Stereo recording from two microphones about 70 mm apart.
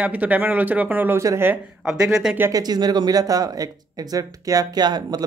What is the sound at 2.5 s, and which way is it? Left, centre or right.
Speech, right.